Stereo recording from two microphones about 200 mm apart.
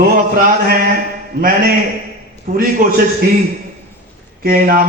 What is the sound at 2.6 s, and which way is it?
Speech, 45° right (ahead or behind).